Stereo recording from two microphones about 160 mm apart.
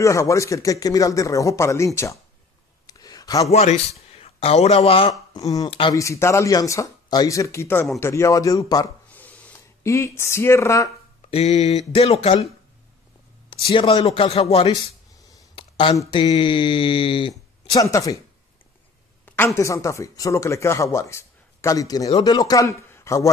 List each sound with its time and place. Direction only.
0.0 s speech: 20° left (ahead or behind)
2.9 s a sound: 25° left (ahead or behind)
3.5 s speech: 40° left (ahead or behind)
5.3 s speech: 20° left (ahead or behind)
5.7 s speech: 35° left (ahead or behind)
5.9 s speech: 20° left (ahead or behind)
9.1 s a sound: 10° left (ahead or behind)
11.2 s speech: 40° left (ahead or behind)
13.5 s speech: 35° left (ahead or behind)
15.5 s a sound: 30° left (ahead or behind)
16.1 s speech: 30° left (ahead or behind)
17.9 s speech: 20° left (ahead or behind)
19.2 s speech: 15° left (ahead or behind)